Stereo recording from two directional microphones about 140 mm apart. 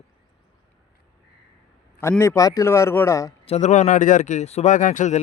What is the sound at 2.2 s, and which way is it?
Speech, 20° left (ahead or behind).